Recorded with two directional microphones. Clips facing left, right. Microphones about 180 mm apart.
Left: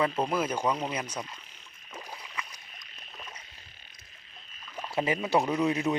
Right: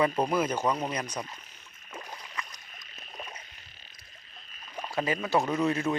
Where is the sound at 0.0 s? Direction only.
5° right (ahead or behind).